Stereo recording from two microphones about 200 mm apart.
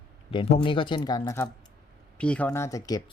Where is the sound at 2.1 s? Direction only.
5° left (ahead or behind).